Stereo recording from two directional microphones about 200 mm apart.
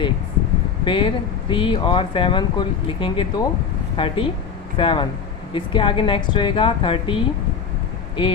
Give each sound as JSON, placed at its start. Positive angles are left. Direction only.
{"t": 0.9, "sound": "speech", "side_deg": 25}